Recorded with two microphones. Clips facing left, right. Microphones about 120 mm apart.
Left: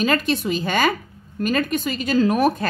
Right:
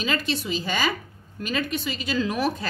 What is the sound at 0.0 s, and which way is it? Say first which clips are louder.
A woman's voice: left 7 dB; 50° left (ahead or behind).